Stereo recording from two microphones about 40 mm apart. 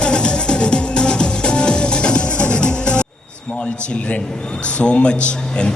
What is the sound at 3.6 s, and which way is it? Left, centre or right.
Speech, left.